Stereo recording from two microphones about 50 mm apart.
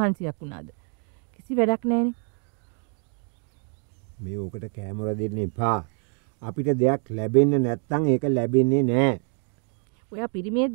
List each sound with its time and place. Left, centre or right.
0.0 s speech: centre
4.2 s speech: centre
10.0 s speech: centre